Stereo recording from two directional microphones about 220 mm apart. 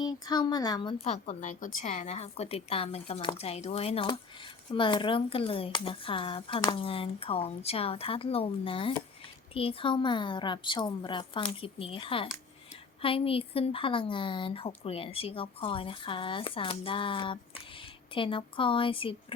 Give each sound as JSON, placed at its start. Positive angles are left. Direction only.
{"t": 0.0, "sound": "speech", "side_deg": 20}